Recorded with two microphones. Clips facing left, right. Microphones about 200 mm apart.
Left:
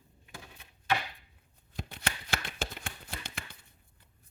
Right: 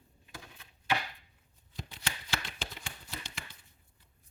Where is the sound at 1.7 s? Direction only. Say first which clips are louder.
Left 4 dB; 55° left (ahead or behind).